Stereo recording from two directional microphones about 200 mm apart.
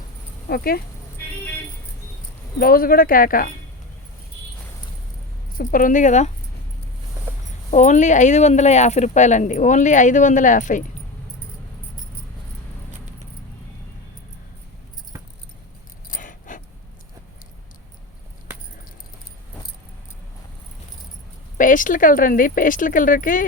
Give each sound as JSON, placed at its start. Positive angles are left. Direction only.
{"t": 0.4, "sound": "speech", "side_deg": 50}
{"t": 2.6, "sound": "speech", "side_deg": 45}
{"t": 5.5, "sound": "speech", "side_deg": 45}
{"t": 7.7, "sound": "speech", "side_deg": 35}
{"t": 15.1, "sound": "keys jangling", "side_deg": -15}
{"t": 16.0, "sound": "keys jangling", "side_deg": 40}
{"t": 21.6, "sound": "speech", "side_deg": 40}